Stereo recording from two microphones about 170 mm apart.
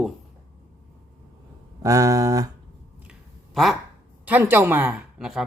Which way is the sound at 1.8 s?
20° right (ahead or behind).